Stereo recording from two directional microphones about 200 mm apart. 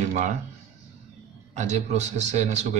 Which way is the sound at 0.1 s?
35° right (ahead or behind).